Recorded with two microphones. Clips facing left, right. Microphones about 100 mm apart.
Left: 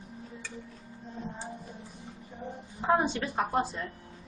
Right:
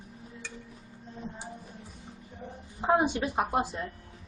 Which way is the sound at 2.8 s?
15° right (ahead or behind).